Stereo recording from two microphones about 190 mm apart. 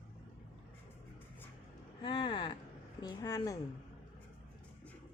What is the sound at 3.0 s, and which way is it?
Speech, 20° left (ahead or behind).